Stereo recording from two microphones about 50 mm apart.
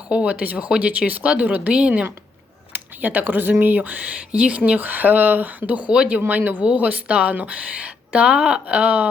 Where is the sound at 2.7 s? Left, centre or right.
Right.